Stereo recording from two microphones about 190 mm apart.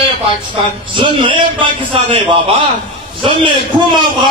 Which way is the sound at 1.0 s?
25° right (ahead or behind).